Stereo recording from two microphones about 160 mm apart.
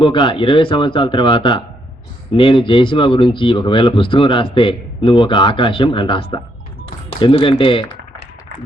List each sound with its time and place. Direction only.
0.0 s speech: 30° left (ahead or behind)